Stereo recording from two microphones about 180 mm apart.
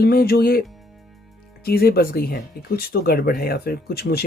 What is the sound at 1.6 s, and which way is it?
Speech, 60° left (ahead or behind).